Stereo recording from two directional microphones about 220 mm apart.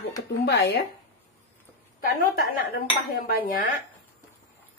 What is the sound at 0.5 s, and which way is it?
Speech, 50° left (ahead or behind).